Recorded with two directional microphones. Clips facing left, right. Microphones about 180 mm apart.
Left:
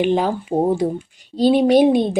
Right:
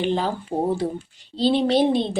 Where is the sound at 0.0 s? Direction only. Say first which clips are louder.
Left 5 dB; 15° left (ahead or behind).